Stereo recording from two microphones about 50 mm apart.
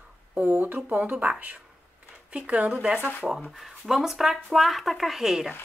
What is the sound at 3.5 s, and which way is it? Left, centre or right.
Speech, centre.